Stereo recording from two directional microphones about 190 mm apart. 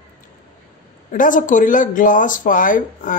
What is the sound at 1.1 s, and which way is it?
Speech, 45° left (ahead or behind).